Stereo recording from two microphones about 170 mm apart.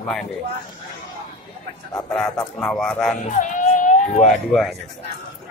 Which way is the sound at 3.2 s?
50° left (ahead or behind).